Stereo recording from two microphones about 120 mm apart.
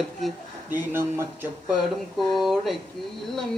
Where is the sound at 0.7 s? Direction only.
20° right (ahead or behind).